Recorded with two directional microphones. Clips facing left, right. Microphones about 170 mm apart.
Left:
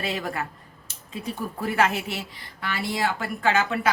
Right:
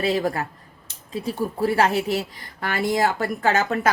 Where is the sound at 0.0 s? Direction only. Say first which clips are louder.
Right 7 dB; 35° right (ahead or behind).